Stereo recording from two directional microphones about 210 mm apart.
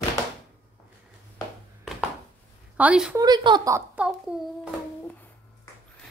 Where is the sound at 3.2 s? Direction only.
20° right (ahead or behind); by 4.4 s 5° right (ahead or behind).